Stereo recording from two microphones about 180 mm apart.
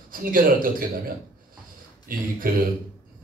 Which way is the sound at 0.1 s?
50° right (ahead or behind).